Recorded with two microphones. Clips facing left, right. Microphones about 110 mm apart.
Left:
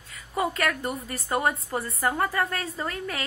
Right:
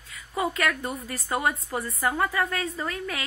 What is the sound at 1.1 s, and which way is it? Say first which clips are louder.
A woman's voice: left 1 dB; 35° left (ahead or behind).